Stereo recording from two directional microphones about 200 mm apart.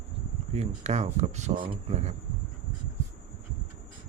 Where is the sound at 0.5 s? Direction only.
35° right (ahead or behind).